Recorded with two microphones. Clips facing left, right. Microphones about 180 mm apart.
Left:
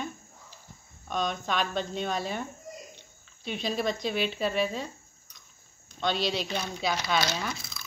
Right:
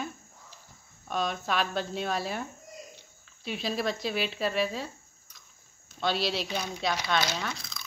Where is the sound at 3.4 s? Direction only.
Centre (ahead or behind).